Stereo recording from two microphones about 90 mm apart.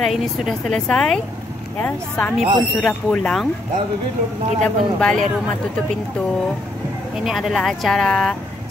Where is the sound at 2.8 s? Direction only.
5° left (ahead or behind).